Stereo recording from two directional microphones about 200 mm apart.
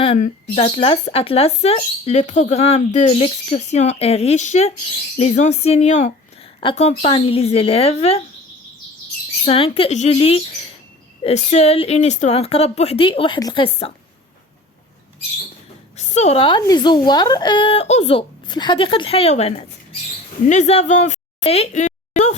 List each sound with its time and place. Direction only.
0.0 s speech: 30° left (ahead or behind)
9.5 s a woman's voice: 30° left (ahead or behind)
16.0 s a woman's voice: 35° left (ahead or behind)
20.5 s a sound: 35° left (ahead or behind)